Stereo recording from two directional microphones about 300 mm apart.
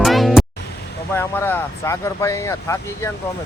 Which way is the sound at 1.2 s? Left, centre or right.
Centre.